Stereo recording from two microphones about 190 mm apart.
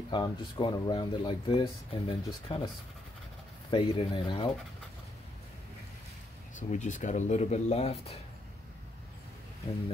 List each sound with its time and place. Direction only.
0.1 s speech: 25° left (ahead or behind)
3.7 s speech: 25° left (ahead or behind)
6.7 s speech: 40° left (ahead or behind)